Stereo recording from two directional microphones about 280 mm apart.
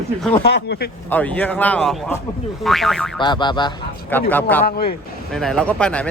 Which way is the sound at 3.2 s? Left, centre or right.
Centre.